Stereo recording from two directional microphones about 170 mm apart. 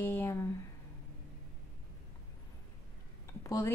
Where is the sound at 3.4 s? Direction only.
15° left (ahead or behind).